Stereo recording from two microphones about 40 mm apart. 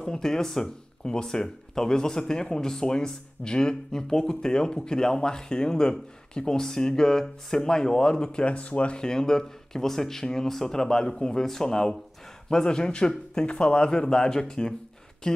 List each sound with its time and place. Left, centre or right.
0.0 s speech: centre; by 8.9 s left
8.9 s speech: centre